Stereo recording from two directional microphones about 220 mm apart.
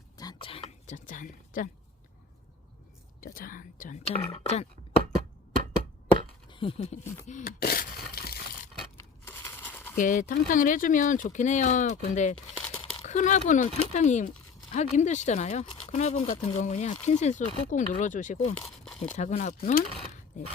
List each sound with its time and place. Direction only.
0.2 s whispering: 20° left (ahead or behind); by 1.7 s 35° left (ahead or behind)
3.2 s speech: 40° left (ahead or behind)
4.3 s throat clearing: 30° left (ahead or behind)
6.5 s speech: 25° left (ahead or behind)
7.3 s a sound: 40° left (ahead or behind)
9.0 s crumpling: 10° left (ahead or behind)
10.0 s speech: 35° left (ahead or behind)
18.5 s a sound: centre (ahead or behind)
19.1 s speech: 30° left (ahead or behind)